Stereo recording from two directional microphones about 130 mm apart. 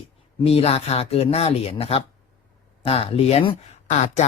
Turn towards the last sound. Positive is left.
turn(degrees=60)  # may be behind; listen again after turning